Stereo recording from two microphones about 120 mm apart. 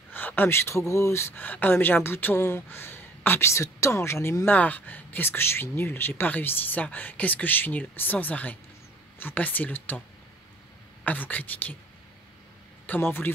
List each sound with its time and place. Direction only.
0.1 s speech: 15° left (ahead or behind)
11.1 s speech: 15° left (ahead or behind)
12.8 s speech: 15° left (ahead or behind)